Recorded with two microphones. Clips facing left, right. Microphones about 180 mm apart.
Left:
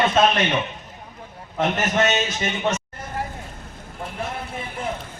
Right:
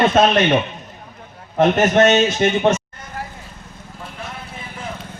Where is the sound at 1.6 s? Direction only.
50° right (ahead or behind).